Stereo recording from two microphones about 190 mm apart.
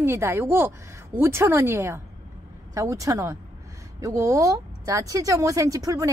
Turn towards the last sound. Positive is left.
turn(degrees=-15)  # may be behind; listen again after turning